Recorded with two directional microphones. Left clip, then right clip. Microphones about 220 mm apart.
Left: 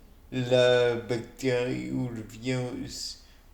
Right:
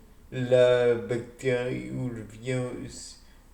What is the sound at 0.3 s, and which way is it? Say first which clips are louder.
Speech: right 2 dB; 40° left (ahead or behind).